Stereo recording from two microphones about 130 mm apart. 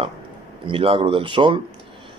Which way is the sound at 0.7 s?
45° right (ahead or behind).